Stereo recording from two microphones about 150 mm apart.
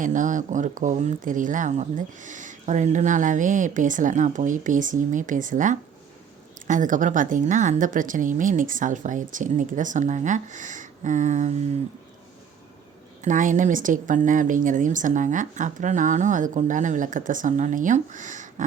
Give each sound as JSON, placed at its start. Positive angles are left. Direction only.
{"t": 0.0, "sound": "speech", "side_deg": -55}
{"t": 13.2, "sound": "speech", "side_deg": -60}